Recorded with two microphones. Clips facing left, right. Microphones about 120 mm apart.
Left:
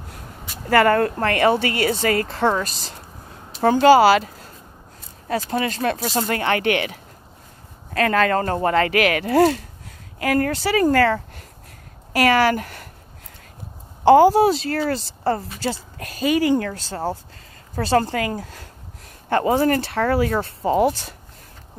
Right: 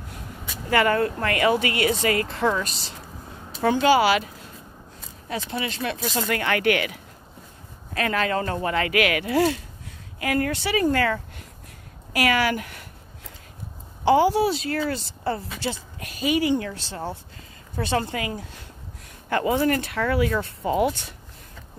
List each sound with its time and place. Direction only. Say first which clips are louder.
0.7 s speech: left 4 dB; 45° left (ahead or behind); by 7.0 s 30° left (ahead or behind)
7.9 s a woman's voice: left 5 dB; 40° left (ahead or behind)
14.0 s speech: left 6 dB; 45° left (ahead or behind)